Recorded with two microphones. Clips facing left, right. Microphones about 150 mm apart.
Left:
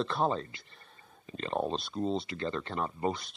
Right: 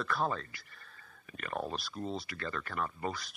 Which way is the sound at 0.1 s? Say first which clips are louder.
Left 4 dB; 25° left (ahead or behind).